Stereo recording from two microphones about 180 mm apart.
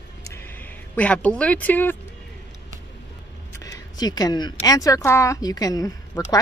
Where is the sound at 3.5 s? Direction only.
20° left (ahead or behind).